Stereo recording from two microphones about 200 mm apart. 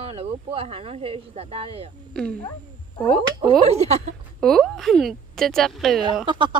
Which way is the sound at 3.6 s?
30° right (ahead or behind).